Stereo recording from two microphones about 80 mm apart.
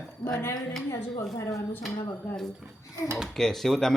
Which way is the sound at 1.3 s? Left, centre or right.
Left.